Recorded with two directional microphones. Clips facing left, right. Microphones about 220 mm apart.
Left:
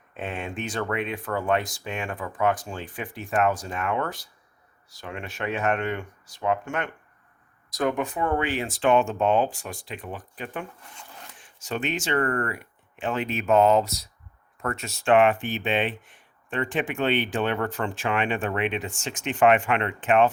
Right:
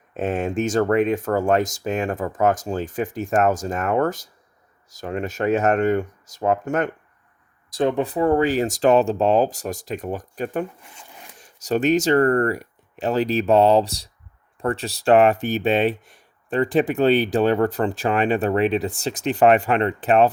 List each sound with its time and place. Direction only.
0.1 s speech: 45° right (ahead or behind)
7.7 s speech: 30° right (ahead or behind)